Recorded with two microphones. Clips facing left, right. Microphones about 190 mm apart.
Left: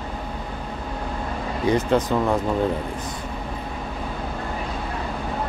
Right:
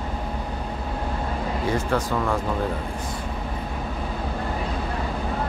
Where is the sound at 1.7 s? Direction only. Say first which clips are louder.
Left 6 dB; 20° left (ahead or behind).